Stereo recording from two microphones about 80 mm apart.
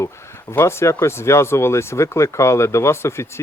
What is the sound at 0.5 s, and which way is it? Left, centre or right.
Speech, left.